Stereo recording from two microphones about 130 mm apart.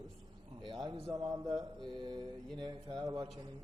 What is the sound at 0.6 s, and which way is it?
A man's voice, 35° right (ahead or behind).